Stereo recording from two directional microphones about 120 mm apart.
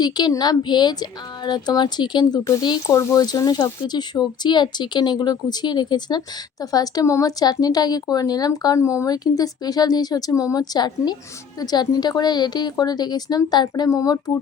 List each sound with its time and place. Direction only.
0.0 s speech: 35° left (ahead or behind)